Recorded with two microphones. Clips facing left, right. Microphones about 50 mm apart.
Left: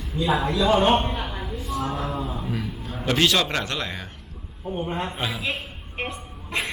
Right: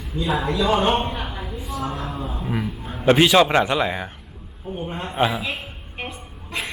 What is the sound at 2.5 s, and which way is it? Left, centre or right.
A man's voice, right.